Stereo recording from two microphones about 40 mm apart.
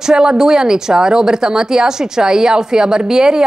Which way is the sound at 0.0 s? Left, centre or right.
Centre.